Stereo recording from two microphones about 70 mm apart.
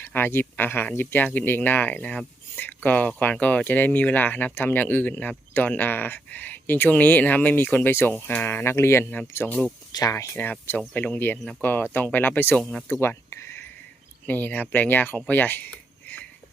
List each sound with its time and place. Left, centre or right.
0.0 s speech: left
8.6 s speech: left
9.9 s speech: left
10.3 s speech: left
11.6 s speech: left
12.5 s speech: centre
12.9 s a sound: left
14.3 s speech: left